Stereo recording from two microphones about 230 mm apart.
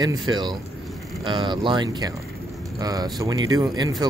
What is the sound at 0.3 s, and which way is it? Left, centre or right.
A man's voice, centre.